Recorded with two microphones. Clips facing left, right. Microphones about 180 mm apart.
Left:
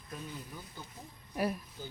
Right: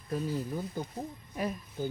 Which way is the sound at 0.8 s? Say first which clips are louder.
Right 12 dB; 45° right (ahead or behind).